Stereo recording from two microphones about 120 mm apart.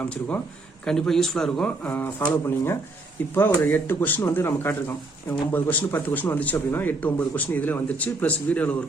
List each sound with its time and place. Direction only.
0.0 s speech: 10° left (ahead or behind)